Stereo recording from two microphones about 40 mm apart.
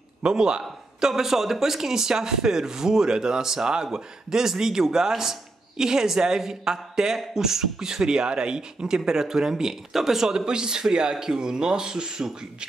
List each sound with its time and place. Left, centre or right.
0.2 s a man's voice: centre
10.3 s a man's voice: right